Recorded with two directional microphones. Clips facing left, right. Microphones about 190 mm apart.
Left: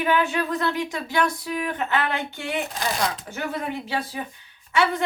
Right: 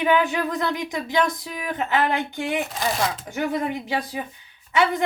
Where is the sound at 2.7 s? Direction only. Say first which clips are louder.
Right 2 dB; centre (ahead or behind).